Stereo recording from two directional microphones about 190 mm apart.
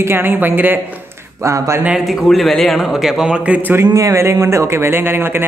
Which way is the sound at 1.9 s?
Centre (ahead or behind).